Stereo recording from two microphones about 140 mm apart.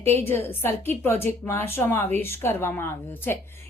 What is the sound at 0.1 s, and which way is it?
A woman's voice, 15° left (ahead or behind).